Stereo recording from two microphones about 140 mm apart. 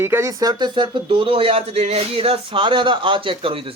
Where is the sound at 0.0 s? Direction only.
20° right (ahead or behind).